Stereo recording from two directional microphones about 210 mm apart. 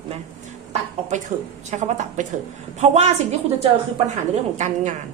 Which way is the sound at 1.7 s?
35° right (ahead or behind).